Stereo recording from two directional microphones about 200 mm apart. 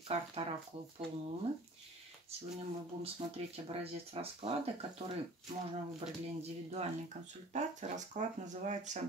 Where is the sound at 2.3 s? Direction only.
30° right (ahead or behind).